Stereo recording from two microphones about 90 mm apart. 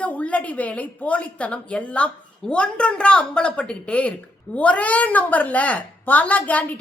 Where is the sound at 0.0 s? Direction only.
15° left (ahead or behind).